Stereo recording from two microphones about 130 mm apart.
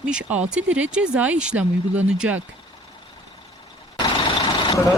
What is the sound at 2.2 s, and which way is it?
Speech, 10° right (ahead or behind).